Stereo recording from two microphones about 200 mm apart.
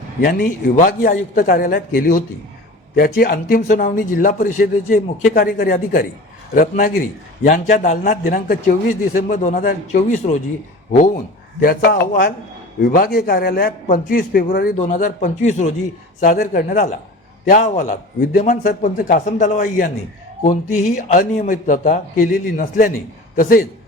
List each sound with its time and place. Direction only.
0.2 s a man's voice: 45° left (ahead or behind)